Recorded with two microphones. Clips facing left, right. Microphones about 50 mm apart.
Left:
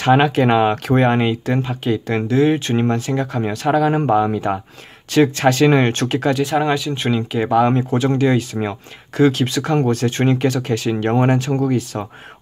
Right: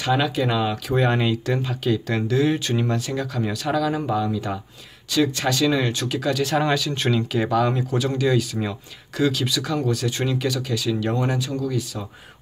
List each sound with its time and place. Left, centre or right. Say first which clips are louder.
0.0 s speech: left 7 dB; left
1.0 s speech: left 5 dB; left
6.4 s speech: left 3 dB; centre; by 12.1 s left